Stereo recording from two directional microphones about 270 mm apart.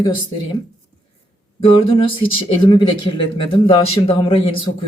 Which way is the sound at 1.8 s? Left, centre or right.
Centre.